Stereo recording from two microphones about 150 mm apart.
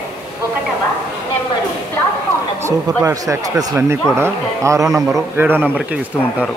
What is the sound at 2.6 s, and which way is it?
A man's voice, 20° right (ahead or behind).